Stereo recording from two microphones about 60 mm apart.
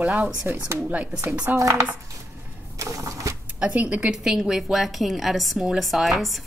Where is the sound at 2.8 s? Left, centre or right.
Right.